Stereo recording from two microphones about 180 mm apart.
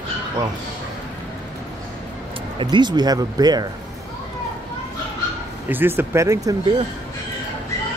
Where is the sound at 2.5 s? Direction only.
25° right (ahead or behind).